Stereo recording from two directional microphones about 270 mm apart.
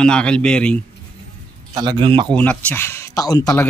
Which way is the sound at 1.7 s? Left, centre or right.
Centre.